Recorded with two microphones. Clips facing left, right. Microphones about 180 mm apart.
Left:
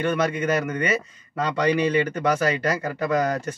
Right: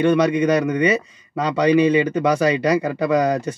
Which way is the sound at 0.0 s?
15° right (ahead or behind).